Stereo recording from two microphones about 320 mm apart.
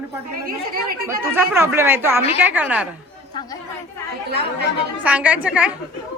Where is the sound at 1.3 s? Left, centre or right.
Centre.